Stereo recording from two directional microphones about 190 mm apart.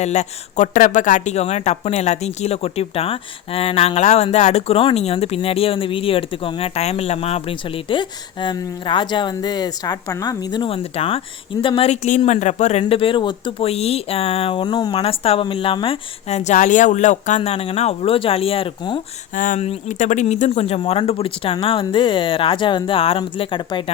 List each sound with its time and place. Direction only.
0.0 s speech: 40° left (ahead or behind)
19.4 s speech: 40° left (ahead or behind)